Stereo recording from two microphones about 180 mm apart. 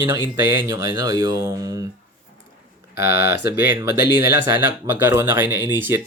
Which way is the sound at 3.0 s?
15° right (ahead or behind).